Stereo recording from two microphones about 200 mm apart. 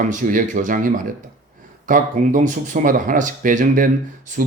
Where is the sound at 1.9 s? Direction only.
40° right (ahead or behind).